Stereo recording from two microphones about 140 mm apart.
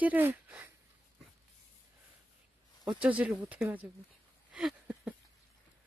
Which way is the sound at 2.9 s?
10° right (ahead or behind).